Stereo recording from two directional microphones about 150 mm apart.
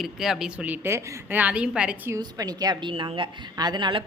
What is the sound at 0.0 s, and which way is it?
A woman's voice, 5° right (ahead or behind).